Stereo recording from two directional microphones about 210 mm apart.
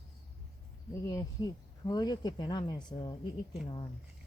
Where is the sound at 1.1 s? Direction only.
15° left (ahead or behind).